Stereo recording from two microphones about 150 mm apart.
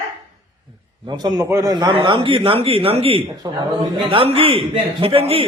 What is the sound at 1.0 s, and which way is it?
A man's voice, 30° right (ahead or behind).